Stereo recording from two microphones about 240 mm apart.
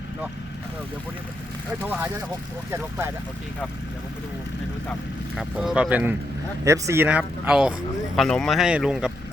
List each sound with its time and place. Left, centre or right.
1.8 s speech: centre
5.4 s speech: centre